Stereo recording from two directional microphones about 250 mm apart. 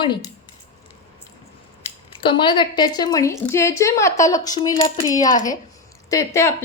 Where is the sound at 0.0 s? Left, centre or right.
Centre.